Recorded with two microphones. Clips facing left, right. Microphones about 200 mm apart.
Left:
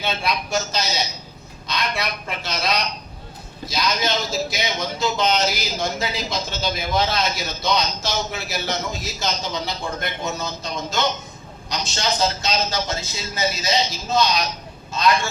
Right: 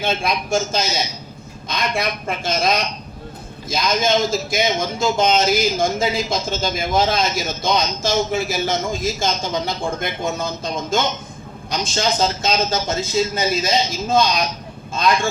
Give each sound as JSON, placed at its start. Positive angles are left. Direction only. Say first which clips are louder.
{"t": 0.0, "sound": "a man's voice", "louder": "right 3 dB", "side_deg": -50}